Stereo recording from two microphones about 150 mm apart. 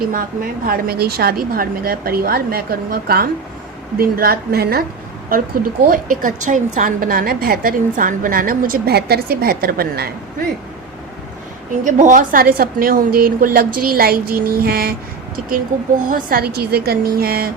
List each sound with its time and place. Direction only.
0.0 s a woman's voice: 70° right (ahead or behind); by 4.8 s 90° right
5.3 s a woman's voice: 75° right (ahead or behind)
5.9 s a woman's voice: 60° right (ahead or behind); by 10.1 s 90° right
11.9 s a woman's voice: 55° right (ahead or behind); by 14.9 s 90° right
15.7 s speech: 60° right (ahead or behind)
16.0 s a woman's voice: 75° right (ahead or behind); by 17.5 s 90° right